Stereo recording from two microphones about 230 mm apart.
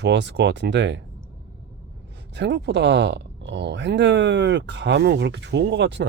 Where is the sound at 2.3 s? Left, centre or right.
Right.